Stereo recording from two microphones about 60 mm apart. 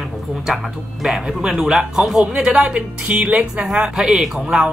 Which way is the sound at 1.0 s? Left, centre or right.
Centre.